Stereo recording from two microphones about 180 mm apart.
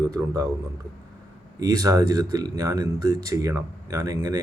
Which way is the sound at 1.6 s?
20° right (ahead or behind).